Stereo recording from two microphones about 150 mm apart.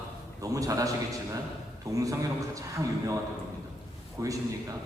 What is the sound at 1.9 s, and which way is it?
Speech, 20° right (ahead or behind).